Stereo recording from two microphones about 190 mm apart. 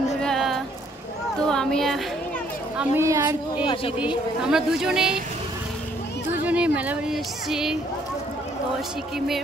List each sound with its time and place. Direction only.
0.2 s a sound: centre (ahead or behind)
1.4 s children playing: 5° left (ahead or behind)
3.0 s speech: 15° right (ahead or behind)
3.6 s speech: 30° left (ahead or behind)
4.0 s speech: 5° right (ahead or behind)
6.4 s speech: 5° right (ahead or behind)